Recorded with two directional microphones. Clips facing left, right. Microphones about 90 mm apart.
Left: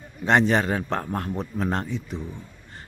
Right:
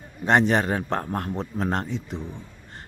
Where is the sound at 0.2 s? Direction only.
20° right (ahead or behind).